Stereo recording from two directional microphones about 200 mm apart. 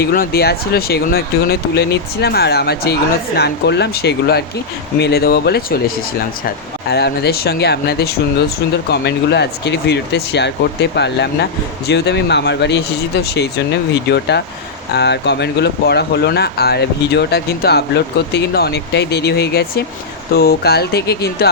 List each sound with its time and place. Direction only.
0.0 s speech: 50° left (ahead or behind)
6.9 s speech: 55° left (ahead or behind)